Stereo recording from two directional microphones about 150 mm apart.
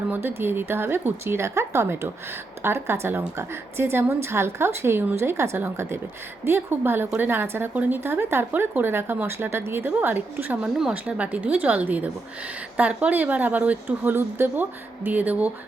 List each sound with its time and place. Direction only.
0.1 s a woman's voice: 15° right (ahead or behind)